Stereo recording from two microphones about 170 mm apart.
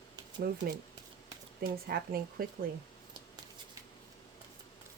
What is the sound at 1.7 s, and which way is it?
Speech, 60° right (ahead or behind).